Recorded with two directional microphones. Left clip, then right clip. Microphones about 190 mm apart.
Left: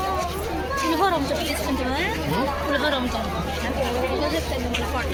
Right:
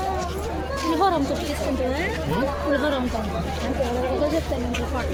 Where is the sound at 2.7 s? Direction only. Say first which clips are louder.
Even; 50° right (ahead or behind).